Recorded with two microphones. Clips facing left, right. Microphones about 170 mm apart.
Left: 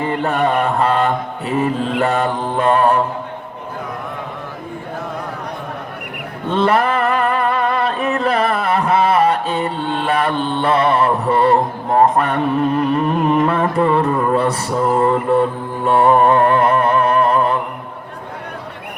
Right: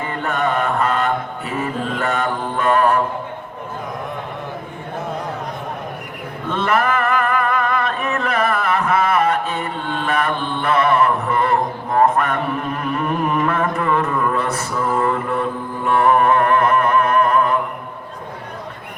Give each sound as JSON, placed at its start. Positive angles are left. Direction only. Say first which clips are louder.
{"t": 0.3, "sound": "mantra", "louder": "left 1 dB", "side_deg": 30}
{"t": 6.5, "sound": "a sound", "louder": "left 3 dB", "side_deg": 30}
{"t": 11.9, "sound": "mantra", "louder": "left 2 dB", "side_deg": 30}
{"t": 13.4, "sound": "mantra", "louder": "left 4 dB", "side_deg": 30}
{"t": 15.9, "sound": "humming", "louder": "left 3 dB", "side_deg": 30}